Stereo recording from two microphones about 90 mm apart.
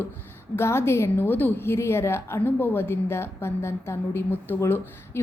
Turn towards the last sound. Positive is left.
turn(degrees=25)  # may be behind; listen again after turning